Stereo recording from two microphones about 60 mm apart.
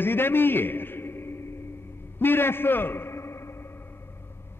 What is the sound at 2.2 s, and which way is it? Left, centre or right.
A man's voice, left.